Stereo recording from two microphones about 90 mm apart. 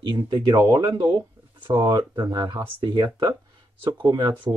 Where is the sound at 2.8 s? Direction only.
60° right (ahead or behind).